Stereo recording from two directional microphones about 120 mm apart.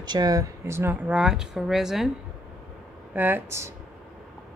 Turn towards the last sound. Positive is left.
turn(degrees=-25)  # may be behind; listen again after turning